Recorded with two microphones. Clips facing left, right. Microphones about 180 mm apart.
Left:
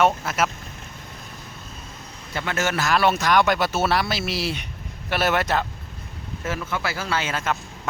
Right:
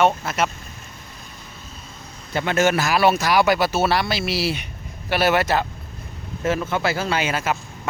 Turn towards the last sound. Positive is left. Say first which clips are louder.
# right 3 dB
turn(degrees=-10)  # may be behind; listen again after turning